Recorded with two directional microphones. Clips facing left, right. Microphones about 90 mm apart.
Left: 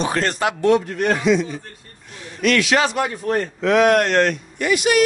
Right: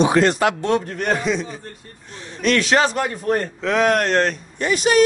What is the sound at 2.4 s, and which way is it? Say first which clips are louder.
Speech: even; 35° right (ahead or behind).